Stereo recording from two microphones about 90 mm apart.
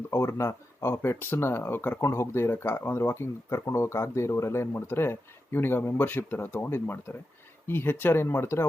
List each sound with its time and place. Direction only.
0.1 s speech: 30° left (ahead or behind)